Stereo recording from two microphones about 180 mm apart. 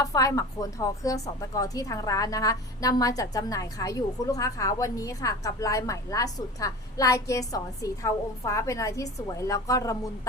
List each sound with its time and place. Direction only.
0.0 s a woman's voice: 20° left (ahead or behind)